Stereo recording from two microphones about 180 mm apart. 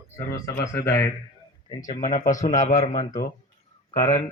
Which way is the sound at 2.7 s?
20° left (ahead or behind).